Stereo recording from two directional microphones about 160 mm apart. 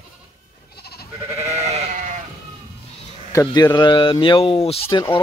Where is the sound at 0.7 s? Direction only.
80° left.